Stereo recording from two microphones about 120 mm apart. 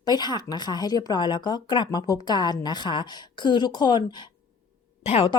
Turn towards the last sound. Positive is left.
turn(degrees=60)  # may be behind; listen again after turning